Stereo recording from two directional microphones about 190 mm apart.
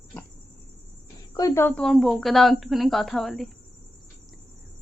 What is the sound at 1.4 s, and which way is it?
A woman's voice, 15° left (ahead or behind).